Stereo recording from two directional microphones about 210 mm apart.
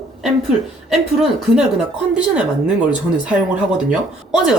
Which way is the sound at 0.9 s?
Centre (ahead or behind).